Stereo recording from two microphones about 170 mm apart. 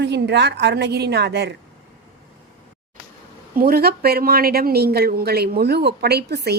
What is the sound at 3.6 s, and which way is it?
Speech, 60° right (ahead or behind).